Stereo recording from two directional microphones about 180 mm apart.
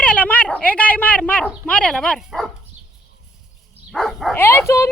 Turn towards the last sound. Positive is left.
turn(degrees=15)  # may be behind; listen again after turning